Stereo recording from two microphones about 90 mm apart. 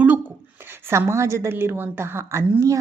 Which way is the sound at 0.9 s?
30° right (ahead or behind).